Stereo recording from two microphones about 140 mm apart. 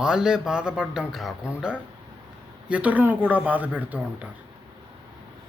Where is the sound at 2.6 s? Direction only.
10° right (ahead or behind).